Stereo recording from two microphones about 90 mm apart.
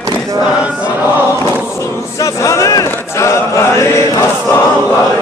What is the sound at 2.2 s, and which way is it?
Chant, 35° left (ahead or behind).